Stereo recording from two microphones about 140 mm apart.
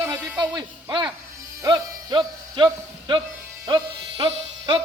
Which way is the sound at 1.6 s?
30° right (ahead or behind).